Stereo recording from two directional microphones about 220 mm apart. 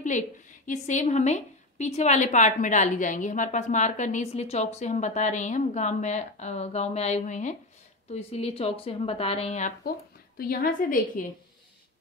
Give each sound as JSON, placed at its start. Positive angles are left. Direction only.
{"t": 0.7, "sound": "a woman's voice", "side_deg": 35}